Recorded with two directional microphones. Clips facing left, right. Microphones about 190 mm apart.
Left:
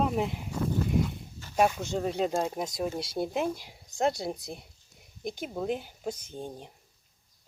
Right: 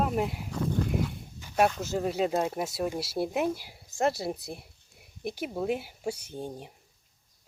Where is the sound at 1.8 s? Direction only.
5° right (ahead or behind).